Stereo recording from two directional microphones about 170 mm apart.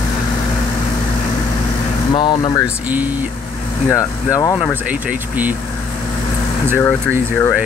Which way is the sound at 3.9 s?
20° left (ahead or behind).